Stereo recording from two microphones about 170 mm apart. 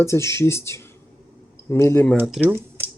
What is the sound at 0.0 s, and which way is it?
Speech, 15° left (ahead or behind).